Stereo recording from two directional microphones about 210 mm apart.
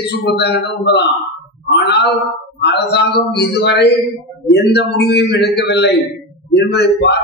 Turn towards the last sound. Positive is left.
turn(degrees=50)  # may be behind; listen again after turning